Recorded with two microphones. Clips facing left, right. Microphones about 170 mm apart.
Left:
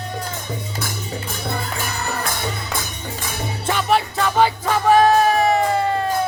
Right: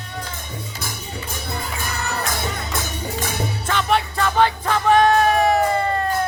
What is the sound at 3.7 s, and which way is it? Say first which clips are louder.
Music: left 2 dB; 5° left (ahead or behind).